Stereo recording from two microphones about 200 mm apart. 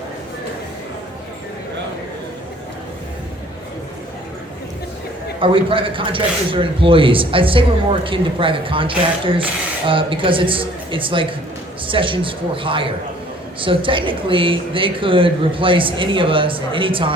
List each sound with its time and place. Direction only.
5.4 s speech: 25° right (ahead or behind)